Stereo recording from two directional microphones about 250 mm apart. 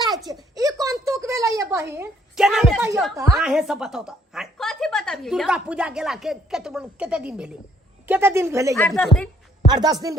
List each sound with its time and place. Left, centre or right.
0.3 s a sound: centre
3.3 s a woman's voice: centre
8.7 s speech: centre
9.6 s a woman's voice: centre